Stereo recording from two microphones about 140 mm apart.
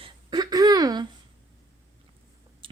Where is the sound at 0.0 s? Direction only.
30° right (ahead or behind).